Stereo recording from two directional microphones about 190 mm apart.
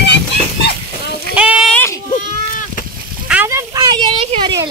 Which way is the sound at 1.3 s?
5° right (ahead or behind).